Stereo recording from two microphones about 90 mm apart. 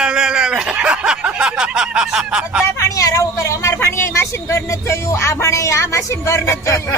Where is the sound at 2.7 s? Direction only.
35° left (ahead or behind).